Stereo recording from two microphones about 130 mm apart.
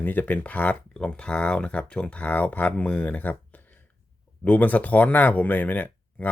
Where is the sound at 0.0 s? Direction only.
15° left (ahead or behind).